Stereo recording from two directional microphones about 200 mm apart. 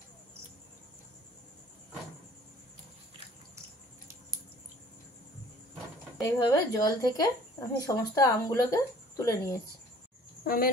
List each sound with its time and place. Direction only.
6.2 s speech: 20° left (ahead or behind)
10.4 s speech: 45° left (ahead or behind)